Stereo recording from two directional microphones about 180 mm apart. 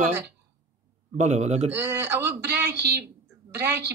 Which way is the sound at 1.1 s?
40° right (ahead or behind).